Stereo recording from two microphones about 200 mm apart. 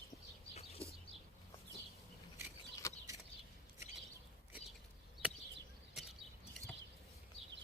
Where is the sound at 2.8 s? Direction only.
15° left (ahead or behind).